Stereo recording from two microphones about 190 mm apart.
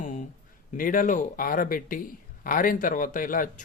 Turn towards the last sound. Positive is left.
turn(degrees=45)  # may be behind; listen again after turning